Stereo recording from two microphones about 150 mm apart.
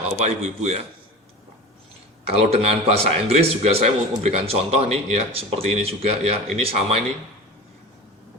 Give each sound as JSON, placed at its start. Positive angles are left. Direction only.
{"t": 0.1, "sound": "speech", "side_deg": -45}
{"t": 2.2, "sound": "speech", "side_deg": -45}